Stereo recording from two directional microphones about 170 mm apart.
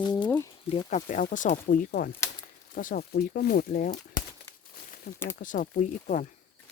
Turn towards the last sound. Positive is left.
turn(degrees=50)  # may be behind; listen again after turning